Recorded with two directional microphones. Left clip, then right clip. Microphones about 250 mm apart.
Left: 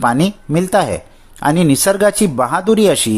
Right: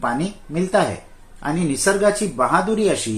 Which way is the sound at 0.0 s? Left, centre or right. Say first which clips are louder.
Left 8 dB; left.